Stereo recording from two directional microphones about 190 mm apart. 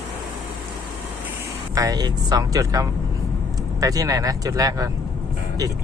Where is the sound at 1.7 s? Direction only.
20° right (ahead or behind).